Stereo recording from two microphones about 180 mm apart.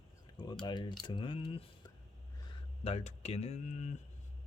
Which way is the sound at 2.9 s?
35° left (ahead or behind).